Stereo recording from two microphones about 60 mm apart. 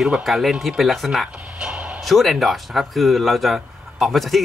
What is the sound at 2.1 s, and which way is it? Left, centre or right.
A man's voice, centre.